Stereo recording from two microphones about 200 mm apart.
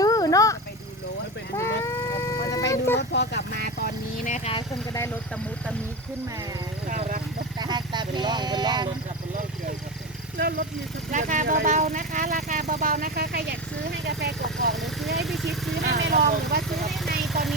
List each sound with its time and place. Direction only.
0.0 s vehicle: 20° left (ahead or behind)
1.5 s a sound: 15° left (ahead or behind)
3.0 s vehicle: 60° left (ahead or behind); by 4.5 s 40° left (ahead or behind)
6.8 s vehicle: 40° right (ahead or behind)
7.6 s a sound: 20° right (ahead or behind)
10.3 s vehicle: 50° right (ahead or behind)
11.1 s speech: 40° right (ahead or behind)
14.8 s vehicle: centre (ahead or behind)
15.7 s vehicle: 55° right (ahead or behind)